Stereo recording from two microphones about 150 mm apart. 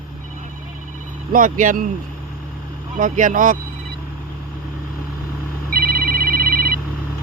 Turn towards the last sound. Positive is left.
turn(degrees=-75)  # may be behind; listen again after turning